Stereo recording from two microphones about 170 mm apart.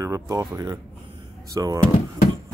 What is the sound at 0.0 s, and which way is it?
Speech, 20° right (ahead or behind).